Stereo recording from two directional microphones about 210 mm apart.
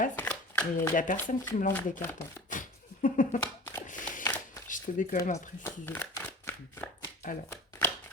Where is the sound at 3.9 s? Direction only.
40° left (ahead or behind).